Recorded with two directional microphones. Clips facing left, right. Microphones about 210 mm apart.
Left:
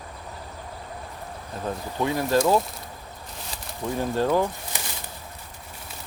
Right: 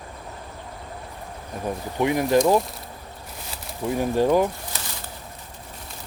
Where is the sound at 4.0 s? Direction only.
15° right (ahead or behind).